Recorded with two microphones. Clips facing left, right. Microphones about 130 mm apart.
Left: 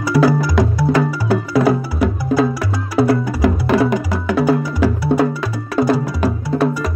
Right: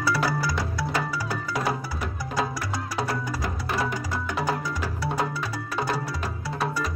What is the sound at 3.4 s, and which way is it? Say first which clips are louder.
Music: left 16 dB; 90° left.